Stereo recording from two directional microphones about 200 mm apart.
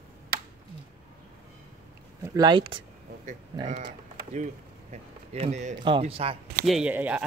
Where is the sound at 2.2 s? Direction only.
20° right (ahead or behind).